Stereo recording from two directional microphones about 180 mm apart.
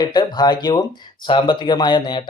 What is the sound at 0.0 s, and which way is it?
Speech, 20° left (ahead or behind).